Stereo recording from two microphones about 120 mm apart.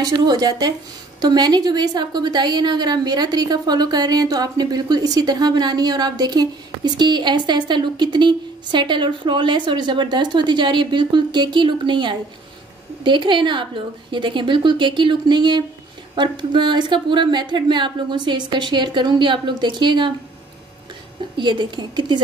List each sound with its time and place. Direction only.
0.0 s a woman's voice: 35° right (ahead or behind)
21.4 s a woman's voice: 40° right (ahead or behind)